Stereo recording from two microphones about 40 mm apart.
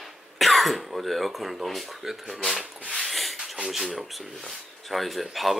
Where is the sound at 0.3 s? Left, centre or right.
Centre.